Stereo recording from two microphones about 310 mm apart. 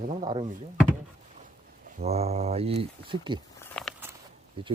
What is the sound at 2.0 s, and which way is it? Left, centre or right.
Speech, right.